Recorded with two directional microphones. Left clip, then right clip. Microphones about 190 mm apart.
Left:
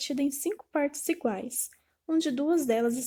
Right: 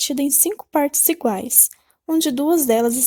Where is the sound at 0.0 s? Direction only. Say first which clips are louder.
Right 9 dB; 35° right (ahead or behind).